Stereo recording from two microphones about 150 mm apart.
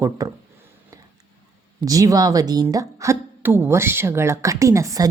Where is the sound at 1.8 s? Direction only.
25° right (ahead or behind).